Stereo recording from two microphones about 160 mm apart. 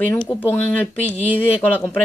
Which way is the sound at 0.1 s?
10° left (ahead or behind).